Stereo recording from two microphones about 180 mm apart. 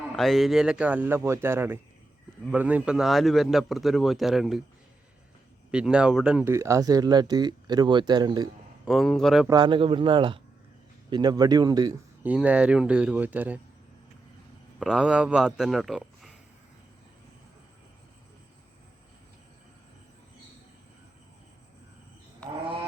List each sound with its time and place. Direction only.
0.1 s speech: centre (ahead or behind)
5.7 s speech: 5° right (ahead or behind); by 8.4 s 25° right (ahead or behind)
8.8 s speech: centre (ahead or behind)
9.5 s speech: 25° right (ahead or behind)
12.2 s speech: 5° right (ahead or behind)
14.8 s speech: 5° right (ahead or behind)
22.4 s wild animals: 5° left (ahead or behind)